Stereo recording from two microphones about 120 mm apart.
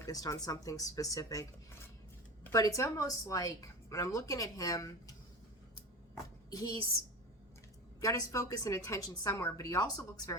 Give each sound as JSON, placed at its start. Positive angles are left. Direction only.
{"t": 0.0, "sound": "a woman's voice", "side_deg": 30}
{"t": 6.5, "sound": "a woman's voice", "side_deg": 30}
{"t": 8.0, "sound": "a woman's voice", "side_deg": 25}